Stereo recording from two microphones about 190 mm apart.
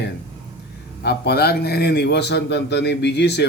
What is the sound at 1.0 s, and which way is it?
Speech, 60° left (ahead or behind).